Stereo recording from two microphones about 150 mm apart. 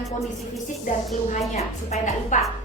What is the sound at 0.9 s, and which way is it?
Speech, 60° left (ahead or behind).